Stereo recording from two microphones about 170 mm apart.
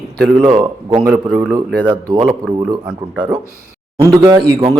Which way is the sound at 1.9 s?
20° right (ahead or behind).